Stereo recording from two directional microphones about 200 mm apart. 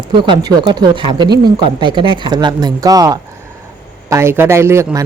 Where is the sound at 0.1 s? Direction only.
20° right (ahead or behind).